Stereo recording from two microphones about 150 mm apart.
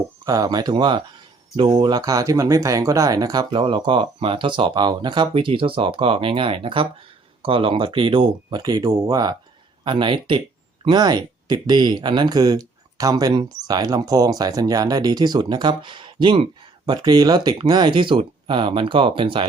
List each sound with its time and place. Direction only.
0.3 s speech: 25° right (ahead or behind)